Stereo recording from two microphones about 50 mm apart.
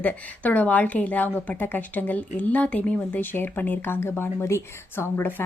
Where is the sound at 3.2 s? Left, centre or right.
Left.